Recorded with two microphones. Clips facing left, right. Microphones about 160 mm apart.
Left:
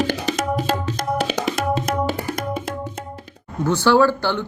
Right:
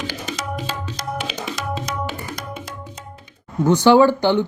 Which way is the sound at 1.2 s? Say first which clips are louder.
Left 6 dB; 50° left (ahead or behind).